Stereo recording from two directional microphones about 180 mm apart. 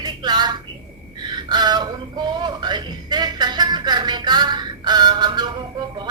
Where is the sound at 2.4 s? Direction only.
25° right (ahead or behind).